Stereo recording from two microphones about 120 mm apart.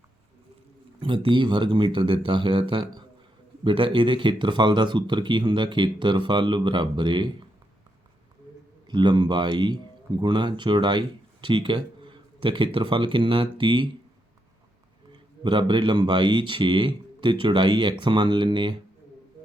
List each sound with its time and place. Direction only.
0.9 s speech: 45° right (ahead or behind)
8.9 s speech: 40° right (ahead or behind)
15.4 s speech: 40° right (ahead or behind)